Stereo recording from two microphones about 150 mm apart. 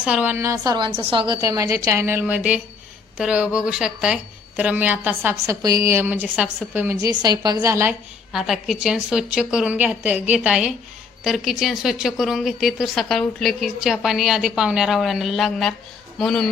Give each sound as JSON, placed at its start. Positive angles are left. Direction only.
{"t": 0.0, "sound": "a woman's voice", "side_deg": -10}
{"t": 0.9, "sound": "a woman's voice", "side_deg": -35}
{"t": 6.9, "sound": "a woman's voice", "side_deg": -25}
{"t": 8.3, "sound": "speech", "side_deg": 0}